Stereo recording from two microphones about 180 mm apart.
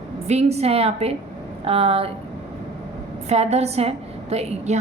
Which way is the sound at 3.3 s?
35° right (ahead or behind).